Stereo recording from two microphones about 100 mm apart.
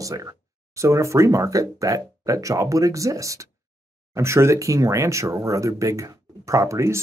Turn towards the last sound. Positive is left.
turn(degrees=-30)  # may be behind; listen again after turning